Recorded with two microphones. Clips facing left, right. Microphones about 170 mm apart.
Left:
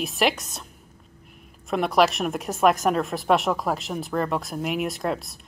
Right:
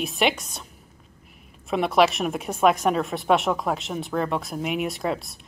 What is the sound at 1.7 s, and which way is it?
A woman's voice, centre (ahead or behind).